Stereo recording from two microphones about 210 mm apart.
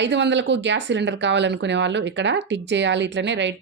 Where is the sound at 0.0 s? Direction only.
55° right (ahead or behind).